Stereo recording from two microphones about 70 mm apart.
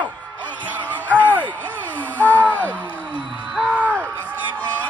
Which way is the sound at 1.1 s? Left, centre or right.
Right.